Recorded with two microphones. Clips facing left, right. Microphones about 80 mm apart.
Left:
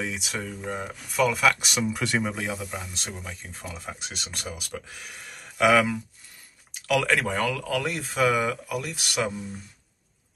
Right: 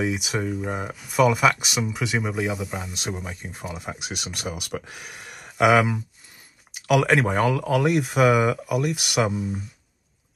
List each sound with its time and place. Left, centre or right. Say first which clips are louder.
0.0 s speech: right 6 dB; centre
3.2 s speech: right 4 dB; right
3.5 s speech: right 4 dB; centre
6.7 s a sound: right 4 dB; centre
7.4 s speech: right 6 dB; right
7.7 s speech: right 7 dB; centre